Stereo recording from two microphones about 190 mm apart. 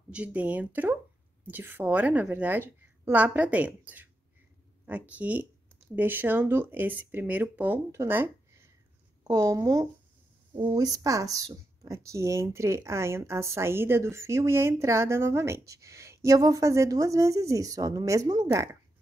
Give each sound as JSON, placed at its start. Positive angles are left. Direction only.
{"t": 0.1, "sound": "speech", "side_deg": -5}